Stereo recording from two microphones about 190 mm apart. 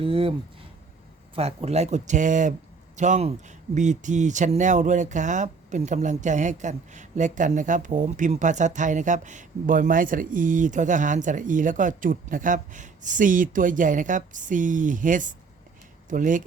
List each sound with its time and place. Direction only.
0.0 s speech: 30° right (ahead or behind)
1.4 s speech: 35° right (ahead or behind)